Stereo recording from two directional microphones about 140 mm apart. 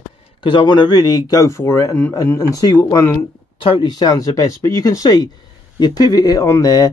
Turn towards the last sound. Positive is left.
turn(degrees=25)  # may be behind; listen again after turning